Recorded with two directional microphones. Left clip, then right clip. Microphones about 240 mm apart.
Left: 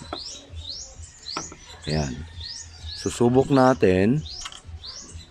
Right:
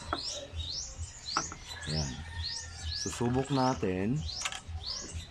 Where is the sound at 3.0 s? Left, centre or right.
Left.